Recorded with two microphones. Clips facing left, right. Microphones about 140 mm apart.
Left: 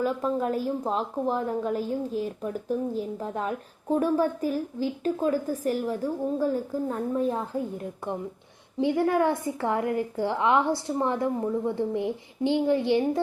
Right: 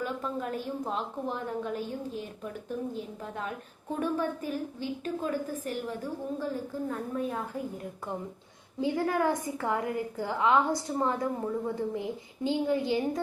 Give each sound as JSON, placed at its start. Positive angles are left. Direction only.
{"t": 0.0, "sound": "a woman's voice", "side_deg": 40}
{"t": 8.8, "sound": "a woman's voice", "side_deg": 20}